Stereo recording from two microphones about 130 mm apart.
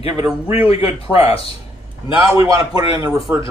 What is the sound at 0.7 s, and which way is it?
A man's voice, 45° left (ahead or behind).